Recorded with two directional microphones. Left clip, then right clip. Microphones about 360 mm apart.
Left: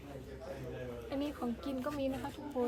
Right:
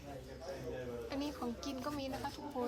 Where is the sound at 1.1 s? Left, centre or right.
Centre.